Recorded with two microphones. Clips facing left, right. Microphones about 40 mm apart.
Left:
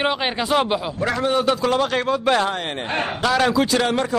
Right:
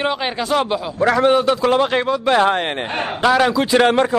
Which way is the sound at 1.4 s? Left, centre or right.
Centre.